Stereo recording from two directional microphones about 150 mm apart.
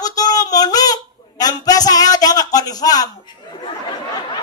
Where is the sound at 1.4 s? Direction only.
25° left (ahead or behind).